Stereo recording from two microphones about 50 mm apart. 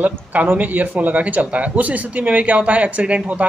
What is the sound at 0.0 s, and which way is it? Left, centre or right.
Speech, right.